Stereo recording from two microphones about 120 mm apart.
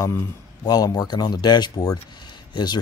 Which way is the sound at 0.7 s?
30° left (ahead or behind).